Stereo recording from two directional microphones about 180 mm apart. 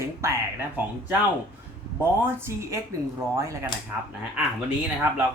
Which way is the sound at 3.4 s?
15° right (ahead or behind).